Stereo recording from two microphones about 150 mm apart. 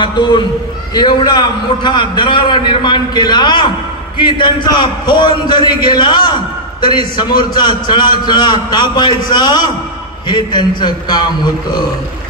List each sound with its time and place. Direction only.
0.0 s a man's voice: 30° left (ahead or behind)